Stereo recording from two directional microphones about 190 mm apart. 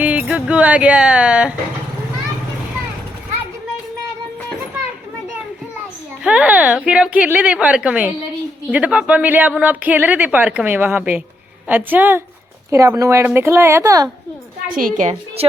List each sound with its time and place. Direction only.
0.0 s a woman's voice: 5° right (ahead or behind)
6.2 s a woman's voice: 5° right (ahead or behind)
14.7 s a woman's voice: 45° right (ahead or behind)